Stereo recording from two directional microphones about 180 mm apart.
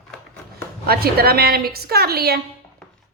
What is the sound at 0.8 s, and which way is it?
A woman's voice, 60° right (ahead or behind).